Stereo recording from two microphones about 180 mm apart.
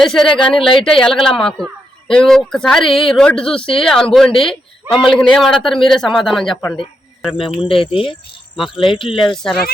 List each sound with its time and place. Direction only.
0.0 s a man's voice: 5° left (ahead or behind)
0.6 s speech: 30° left (ahead or behind)
0.9 s a man's voice: 5° left (ahead or behind)
7.7 s speech: 30° left (ahead or behind)
8.5 s speech: centre (ahead or behind)
8.8 s speech: 30° left (ahead or behind)
9.3 s a man's voice: 5° left (ahead or behind)